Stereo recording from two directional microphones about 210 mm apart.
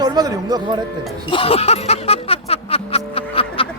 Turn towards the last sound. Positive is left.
turn(degrees=25)  # may be behind; listen again after turning